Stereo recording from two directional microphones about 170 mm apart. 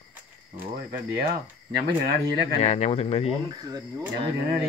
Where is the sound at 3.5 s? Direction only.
20° right (ahead or behind).